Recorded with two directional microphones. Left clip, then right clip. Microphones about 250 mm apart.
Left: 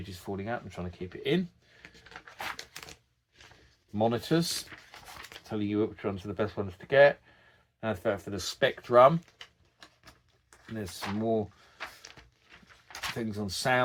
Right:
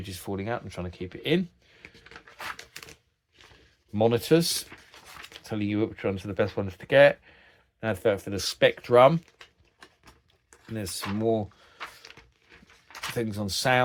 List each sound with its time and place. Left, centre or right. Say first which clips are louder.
0.0 s speech: right 4 dB; right
2.5 s a sound: right 1 dB; centre
3.9 s speech: right 6 dB; right
5.5 s speech: right 2 dB; right
10.8 s speech: right 3 dB; right
12.1 s a sound: right 3 dB; centre
13.1 s speech: right 5 dB; right